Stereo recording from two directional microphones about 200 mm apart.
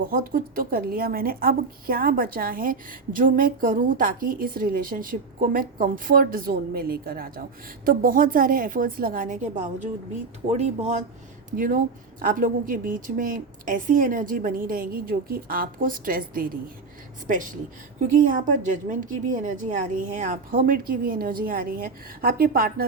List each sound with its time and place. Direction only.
0.1 s a woman's voice: 45° right (ahead or behind)